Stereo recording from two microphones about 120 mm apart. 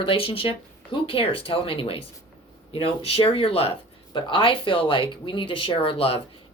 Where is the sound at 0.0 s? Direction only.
50° left (ahead or behind).